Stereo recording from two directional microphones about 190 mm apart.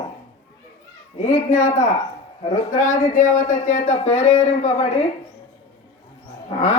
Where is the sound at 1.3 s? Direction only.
40° left (ahead or behind).